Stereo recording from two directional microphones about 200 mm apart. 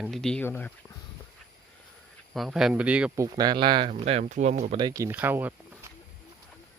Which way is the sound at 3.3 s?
20° right (ahead or behind).